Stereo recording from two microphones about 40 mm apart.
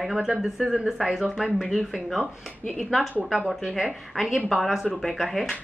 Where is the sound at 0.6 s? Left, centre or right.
Centre.